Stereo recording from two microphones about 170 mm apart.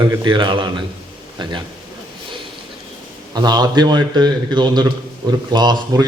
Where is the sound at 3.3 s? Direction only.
25° right (ahead or behind).